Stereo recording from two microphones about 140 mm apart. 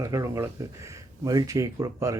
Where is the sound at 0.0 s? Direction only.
20° right (ahead or behind).